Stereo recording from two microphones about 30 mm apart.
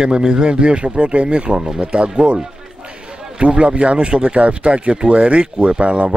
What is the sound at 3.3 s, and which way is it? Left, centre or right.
Speech, right.